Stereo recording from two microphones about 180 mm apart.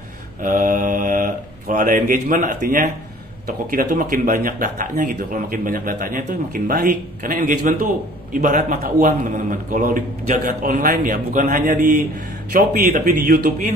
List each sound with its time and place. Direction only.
0.4 s speech: 50° right (ahead or behind)
8.8 s speech: 55° right (ahead or behind)
12.5 s speech: 60° right (ahead or behind)